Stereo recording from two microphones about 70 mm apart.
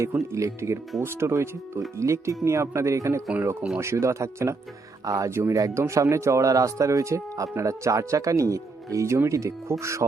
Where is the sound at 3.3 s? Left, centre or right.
Right.